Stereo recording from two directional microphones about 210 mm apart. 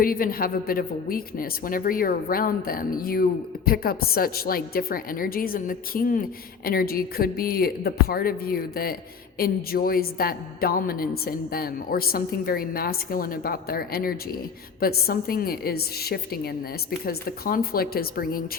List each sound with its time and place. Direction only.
0.0 s a woman's voice: 45° left (ahead or behind)